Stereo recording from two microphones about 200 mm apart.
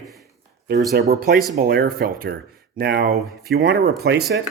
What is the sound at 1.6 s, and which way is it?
Speech, 45° right (ahead or behind).